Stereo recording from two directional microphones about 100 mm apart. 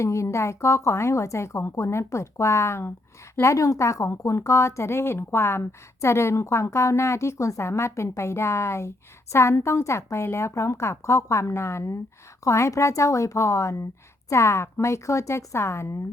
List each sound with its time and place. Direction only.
0.0 s speech: 30° left (ahead or behind)